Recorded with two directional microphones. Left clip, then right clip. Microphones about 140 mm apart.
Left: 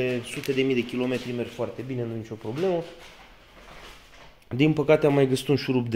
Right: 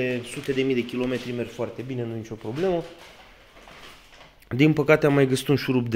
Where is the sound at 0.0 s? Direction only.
5° right (ahead or behind); by 2.8 s 20° right (ahead or behind).